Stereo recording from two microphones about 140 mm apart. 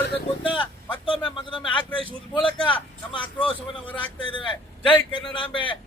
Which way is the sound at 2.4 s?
40° left (ahead or behind).